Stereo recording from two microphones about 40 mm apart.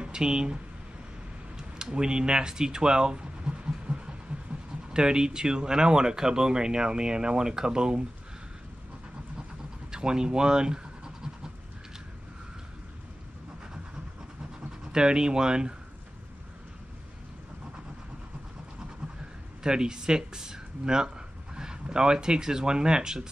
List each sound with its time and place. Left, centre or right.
0.0 s speech: centre
1.6 s a sound: centre
4.9 s speech: centre
9.8 s speech: centre
14.9 s speech: right
19.6 s speech: centre